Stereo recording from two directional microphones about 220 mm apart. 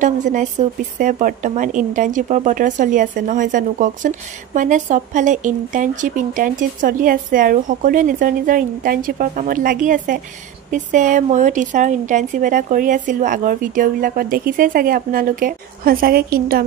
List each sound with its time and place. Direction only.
0.0 s speech: 35° right (ahead or behind)